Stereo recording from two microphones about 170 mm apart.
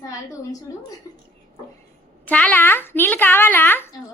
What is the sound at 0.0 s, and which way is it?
Speech, 20° left (ahead or behind).